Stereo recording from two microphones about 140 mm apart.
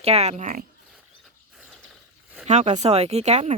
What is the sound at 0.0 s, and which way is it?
Speech, 50° right (ahead or behind).